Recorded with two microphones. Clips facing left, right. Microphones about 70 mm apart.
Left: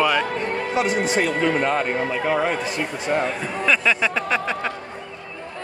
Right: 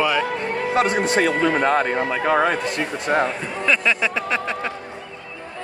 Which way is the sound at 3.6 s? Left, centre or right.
Centre.